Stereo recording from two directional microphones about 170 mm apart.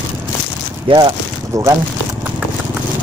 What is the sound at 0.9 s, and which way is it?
Speech, 25° right (ahead or behind).